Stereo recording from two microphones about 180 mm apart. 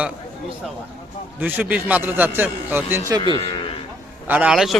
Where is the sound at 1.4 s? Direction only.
10° right (ahead or behind).